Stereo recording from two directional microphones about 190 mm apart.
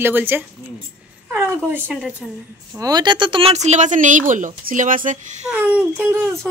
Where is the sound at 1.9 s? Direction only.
5° left (ahead or behind).